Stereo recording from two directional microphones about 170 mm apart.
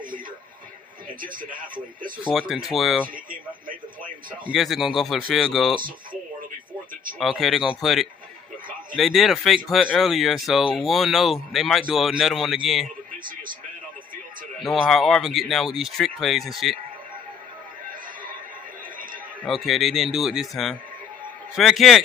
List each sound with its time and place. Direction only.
1.2 s speech: 55° right (ahead or behind)
2.2 s speech: 5° right (ahead or behind)
3.3 s a sound: 55° right (ahead or behind)
4.5 s speech: centre (ahead or behind)
7.2 s speech: centre (ahead or behind)
14.6 s speech: centre (ahead or behind)
19.4 s speech: centre (ahead or behind)